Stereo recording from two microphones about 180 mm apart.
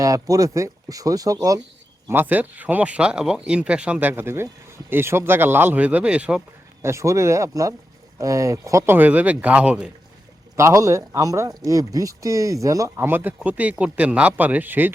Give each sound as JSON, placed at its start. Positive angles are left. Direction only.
{"t": 0.0, "sound": "speech", "side_deg": -20}
{"t": 10.6, "sound": "speech", "side_deg": -15}